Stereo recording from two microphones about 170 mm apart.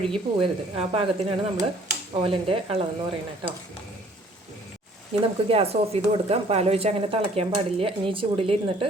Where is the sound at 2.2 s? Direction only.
30° right (ahead or behind).